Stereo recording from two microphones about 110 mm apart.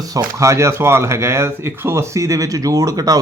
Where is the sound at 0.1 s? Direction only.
30° right (ahead or behind).